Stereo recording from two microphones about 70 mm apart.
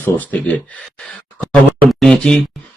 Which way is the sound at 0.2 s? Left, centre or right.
Left.